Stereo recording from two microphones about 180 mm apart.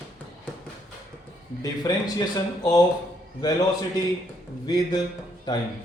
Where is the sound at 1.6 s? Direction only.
20° left (ahead or behind).